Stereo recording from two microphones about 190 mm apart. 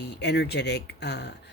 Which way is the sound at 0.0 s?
60° left (ahead or behind).